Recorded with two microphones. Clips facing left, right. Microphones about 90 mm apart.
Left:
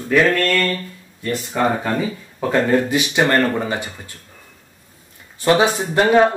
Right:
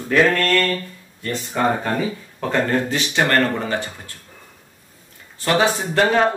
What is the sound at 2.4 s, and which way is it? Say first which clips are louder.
Speech: left 3 dB; 5° left (ahead or behind).